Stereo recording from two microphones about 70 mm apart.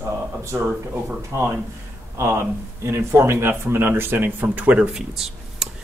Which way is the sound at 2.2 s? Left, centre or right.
Right.